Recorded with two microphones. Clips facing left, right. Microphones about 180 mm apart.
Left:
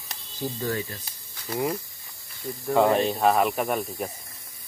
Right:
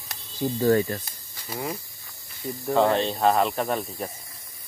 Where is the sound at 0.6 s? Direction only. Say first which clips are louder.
Right 11 dB; 55° right (ahead or behind).